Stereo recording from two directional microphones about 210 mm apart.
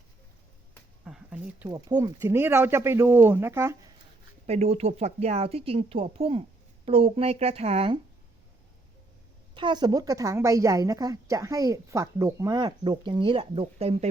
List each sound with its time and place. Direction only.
1.0 s a woman's voice: 5° right (ahead or behind)
4.4 s a woman's voice: 30° right (ahead or behind)
9.6 s a woman's voice: 20° right (ahead or behind)